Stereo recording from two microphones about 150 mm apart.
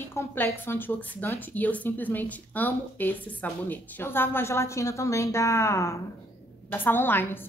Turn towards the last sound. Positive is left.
turn(degrees=15)  # may be behind; listen again after turning